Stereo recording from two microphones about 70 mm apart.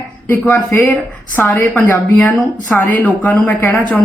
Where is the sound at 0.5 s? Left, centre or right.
Left.